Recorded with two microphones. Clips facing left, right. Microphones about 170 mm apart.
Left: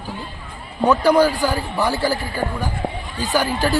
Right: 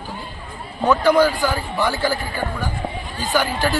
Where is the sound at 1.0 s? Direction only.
40° left (ahead or behind).